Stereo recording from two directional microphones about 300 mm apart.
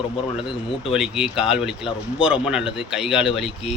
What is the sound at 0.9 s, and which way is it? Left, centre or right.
Speech, centre.